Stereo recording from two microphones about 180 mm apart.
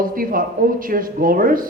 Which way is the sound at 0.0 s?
50° right (ahead or behind).